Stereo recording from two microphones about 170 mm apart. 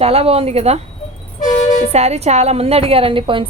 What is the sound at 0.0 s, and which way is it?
Speech, 35° right (ahead or behind).